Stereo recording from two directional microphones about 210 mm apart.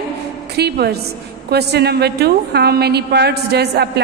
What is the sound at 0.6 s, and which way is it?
A woman's voice, 50° right (ahead or behind).